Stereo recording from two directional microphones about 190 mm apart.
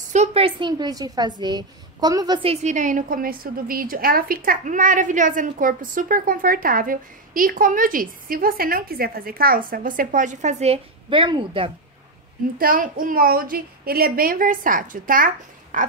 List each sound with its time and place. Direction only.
0.1 s a woman's voice: 35° right (ahead or behind)
12.5 s a woman's voice: 45° right (ahead or behind)